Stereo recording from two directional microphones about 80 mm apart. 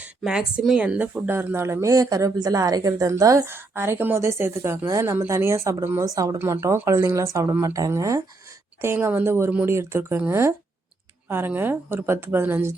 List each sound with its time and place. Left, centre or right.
0.3 s speech: centre; by 3.4 s right
3.4 s speech: right
4.9 s speech: right
6.1 s speech: right
6.4 s a woman's voice: right